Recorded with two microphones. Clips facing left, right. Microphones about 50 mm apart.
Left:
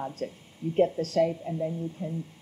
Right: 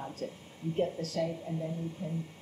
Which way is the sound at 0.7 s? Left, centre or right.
Left.